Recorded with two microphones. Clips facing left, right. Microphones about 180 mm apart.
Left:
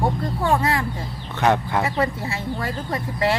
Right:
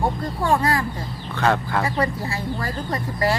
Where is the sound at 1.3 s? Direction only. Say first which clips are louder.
Left 1 dB; 20° left (ahead or behind).